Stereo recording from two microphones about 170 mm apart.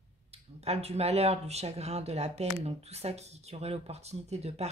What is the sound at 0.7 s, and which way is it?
Speech, 40° right (ahead or behind).